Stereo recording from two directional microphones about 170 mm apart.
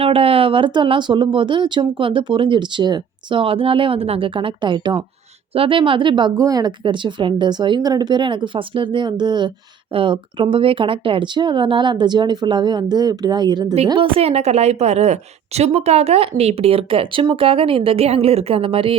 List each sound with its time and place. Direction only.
0.0 s a woman's voice: 35° right (ahead or behind)